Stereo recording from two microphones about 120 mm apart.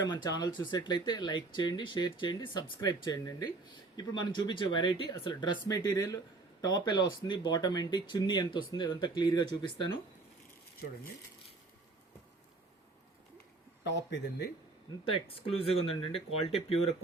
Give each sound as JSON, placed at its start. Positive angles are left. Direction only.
{"t": 0.0, "sound": "speech", "side_deg": 35}
{"t": 15.0, "sound": "speech", "side_deg": 50}